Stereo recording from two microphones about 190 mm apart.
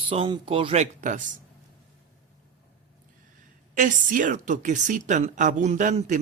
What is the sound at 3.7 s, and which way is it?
Speech, 45° right (ahead or behind).